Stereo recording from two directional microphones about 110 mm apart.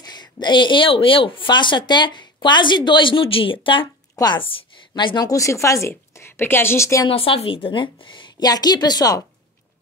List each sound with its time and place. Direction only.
0.0 s speech: 40° left (ahead or behind)
4.1 s chopping: 35° left (ahead or behind)
4.4 s speech: 55° left (ahead or behind); by 7.1 s 25° left (ahead or behind)
7.1 s speech: 55° left (ahead or behind); by 9.2 s 35° left (ahead or behind)